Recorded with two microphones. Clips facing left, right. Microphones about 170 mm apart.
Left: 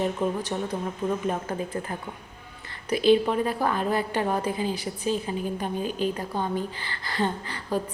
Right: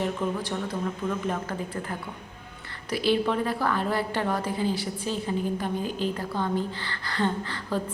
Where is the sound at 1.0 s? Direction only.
30° left (ahead or behind).